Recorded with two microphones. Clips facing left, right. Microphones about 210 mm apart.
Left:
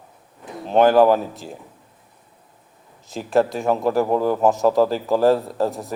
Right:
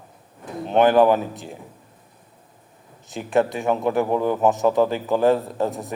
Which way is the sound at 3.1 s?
Centre (ahead or behind).